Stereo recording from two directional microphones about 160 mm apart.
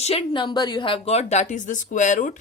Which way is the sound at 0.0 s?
40° left (ahead or behind).